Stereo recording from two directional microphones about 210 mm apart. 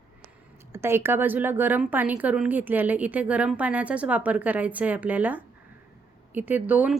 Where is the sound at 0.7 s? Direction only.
10° right (ahead or behind).